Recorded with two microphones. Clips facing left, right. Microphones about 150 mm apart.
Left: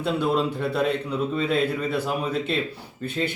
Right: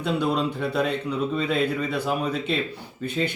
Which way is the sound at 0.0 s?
Centre (ahead or behind).